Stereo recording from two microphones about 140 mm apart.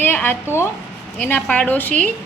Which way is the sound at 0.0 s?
15° left (ahead or behind).